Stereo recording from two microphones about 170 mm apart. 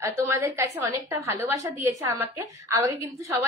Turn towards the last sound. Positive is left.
turn(degrees=-15)  # may be behind; listen again after turning